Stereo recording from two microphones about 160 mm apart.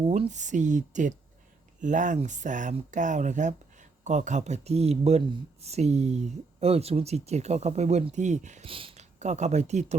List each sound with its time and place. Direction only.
0.1 s speech: 45° right (ahead or behind)
8.7 s speech: 35° right (ahead or behind)